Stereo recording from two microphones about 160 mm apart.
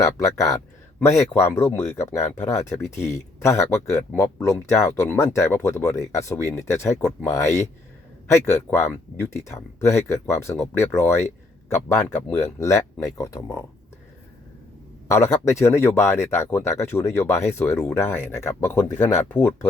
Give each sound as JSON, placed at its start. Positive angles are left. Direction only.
{"t": 0.0, "sound": "speech", "side_deg": 20}
{"t": 15.0, "sound": "speech", "side_deg": 20}